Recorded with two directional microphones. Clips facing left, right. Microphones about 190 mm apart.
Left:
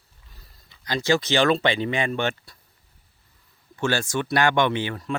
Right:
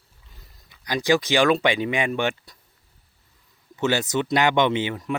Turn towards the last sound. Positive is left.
turn(degrees=-15)  # may be behind; listen again after turning